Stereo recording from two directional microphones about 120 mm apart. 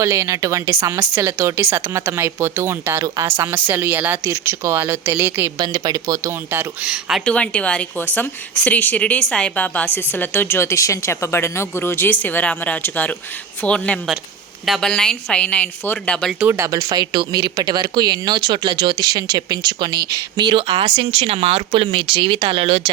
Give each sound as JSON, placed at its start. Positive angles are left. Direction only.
{"t": 0.0, "sound": "a woman's voice", "side_deg": -25}
{"t": 5.5, "sound": "speech", "side_deg": -35}
{"t": 6.8, "sound": "speech", "side_deg": -5}
{"t": 7.3, "sound": "a woman's voice", "side_deg": 10}
{"t": 16.4, "sound": "speech", "side_deg": -20}